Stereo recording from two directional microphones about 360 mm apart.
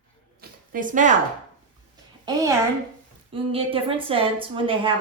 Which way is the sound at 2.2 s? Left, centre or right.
Centre.